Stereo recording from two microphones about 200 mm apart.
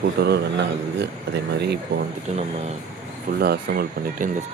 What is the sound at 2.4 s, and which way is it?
Speech, 35° right (ahead or behind).